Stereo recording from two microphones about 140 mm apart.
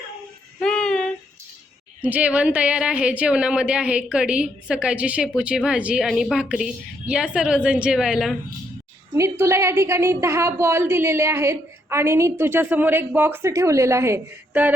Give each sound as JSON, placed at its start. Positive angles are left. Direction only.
{"t": 0.6, "sound": "child singing", "side_deg": 5}
{"t": 2.0, "sound": "a woman's voice", "side_deg": -10}
{"t": 9.1, "sound": "a woman's voice", "side_deg": -20}